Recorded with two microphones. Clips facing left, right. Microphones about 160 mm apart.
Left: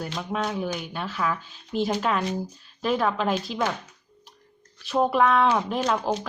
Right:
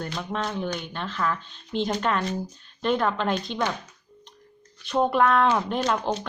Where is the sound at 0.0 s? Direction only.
5° left (ahead or behind).